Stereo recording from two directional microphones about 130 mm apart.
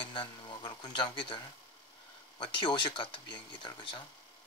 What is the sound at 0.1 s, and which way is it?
Speech, 40° left (ahead or behind).